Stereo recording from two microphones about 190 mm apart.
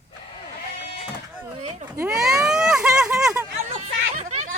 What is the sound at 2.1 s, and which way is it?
Vehicle, 5° right (ahead or behind).